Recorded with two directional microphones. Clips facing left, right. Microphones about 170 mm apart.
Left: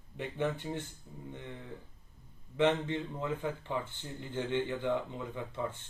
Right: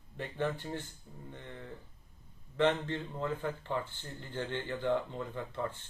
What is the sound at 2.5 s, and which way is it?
Speech, 15° left (ahead or behind).